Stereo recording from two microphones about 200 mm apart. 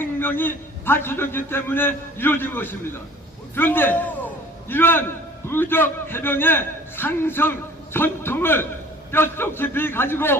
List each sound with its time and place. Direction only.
0.0 s a man's voice: 10° left (ahead or behind)